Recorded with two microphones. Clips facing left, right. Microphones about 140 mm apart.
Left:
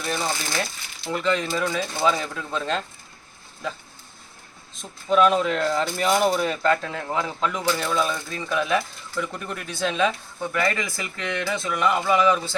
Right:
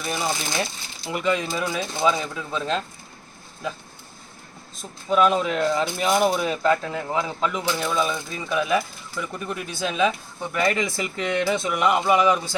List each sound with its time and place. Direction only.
0.0 s speech: 10° right (ahead or behind)
4.8 s speech: 5° right (ahead or behind)
10.5 s speech: 20° right (ahead or behind)